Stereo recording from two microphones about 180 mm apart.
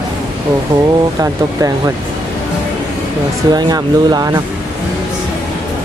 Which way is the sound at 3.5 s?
20° right (ahead or behind).